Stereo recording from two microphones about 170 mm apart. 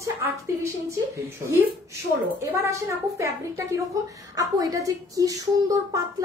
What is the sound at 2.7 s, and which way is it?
A woman's voice, 15° right (ahead or behind).